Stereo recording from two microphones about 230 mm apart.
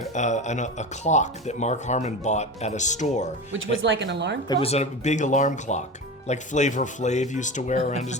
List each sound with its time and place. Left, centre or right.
0.1 s speech: left
3.8 s speech: right
4.4 s speech: left